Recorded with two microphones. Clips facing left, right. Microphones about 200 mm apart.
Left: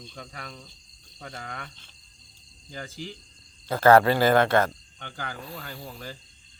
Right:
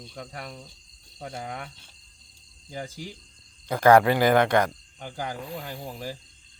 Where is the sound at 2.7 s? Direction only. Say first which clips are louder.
Right 2 dB; 5° right (ahead or behind).